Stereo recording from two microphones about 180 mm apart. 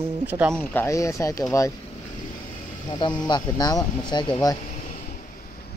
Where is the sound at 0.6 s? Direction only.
15° left (ahead or behind).